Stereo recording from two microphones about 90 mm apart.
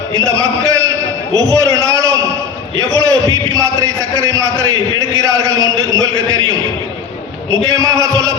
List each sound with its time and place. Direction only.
0.3 s a man's voice: 35° right (ahead or behind)
1.5 s a sound: 35° right (ahead or behind)
2.7 s a man's voice: 40° right (ahead or behind)
7.7 s a man's voice: 40° right (ahead or behind)